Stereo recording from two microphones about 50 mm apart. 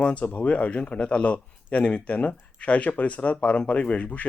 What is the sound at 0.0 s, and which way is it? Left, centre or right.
A man's voice, left.